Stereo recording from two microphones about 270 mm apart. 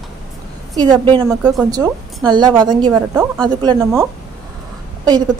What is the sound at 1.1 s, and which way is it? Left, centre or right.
Speech, centre.